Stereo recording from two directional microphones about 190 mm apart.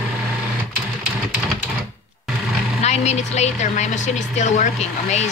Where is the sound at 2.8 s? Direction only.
35° left (ahead or behind).